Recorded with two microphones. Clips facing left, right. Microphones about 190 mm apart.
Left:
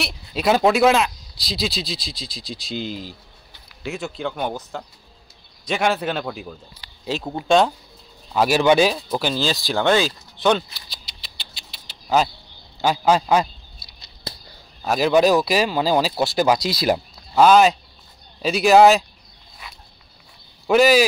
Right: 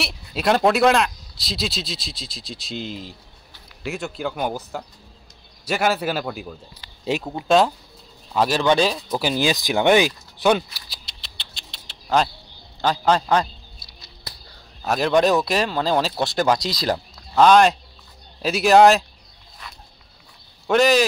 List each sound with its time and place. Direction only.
0.0 s a man's voice: centre (ahead or behind)
9.2 s speech: 15° right (ahead or behind)
10.9 s rodents: centre (ahead or behind)
12.8 s a man's voice: 10° left (ahead or behind)
14.8 s speech: 5° left (ahead or behind)
20.6 s speech: 5° left (ahead or behind)